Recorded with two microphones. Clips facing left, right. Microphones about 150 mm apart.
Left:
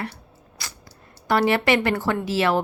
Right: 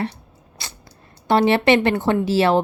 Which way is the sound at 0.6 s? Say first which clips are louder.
Right 1 dB; 25° right (ahead or behind).